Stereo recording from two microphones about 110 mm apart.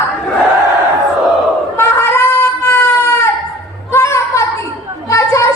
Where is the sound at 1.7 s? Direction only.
25° left (ahead or behind).